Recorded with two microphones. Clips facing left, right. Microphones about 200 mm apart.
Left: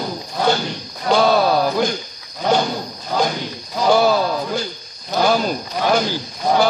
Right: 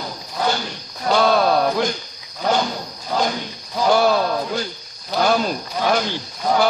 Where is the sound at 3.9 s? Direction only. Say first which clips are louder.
Left 2 dB; centre (ahead or behind).